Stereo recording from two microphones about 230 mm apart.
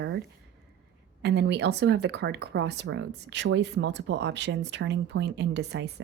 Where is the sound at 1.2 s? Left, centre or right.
Right.